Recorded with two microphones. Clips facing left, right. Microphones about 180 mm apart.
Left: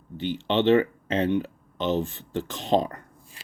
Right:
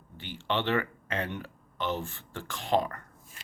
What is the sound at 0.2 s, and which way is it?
Speech, 20° left (ahead or behind).